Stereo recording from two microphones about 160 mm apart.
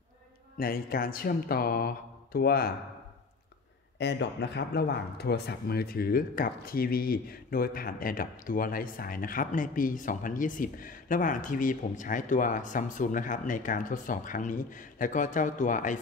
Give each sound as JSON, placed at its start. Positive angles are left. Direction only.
{"t": 0.6, "sound": "speech", "side_deg": 65}
{"t": 4.0, "sound": "speech", "side_deg": 90}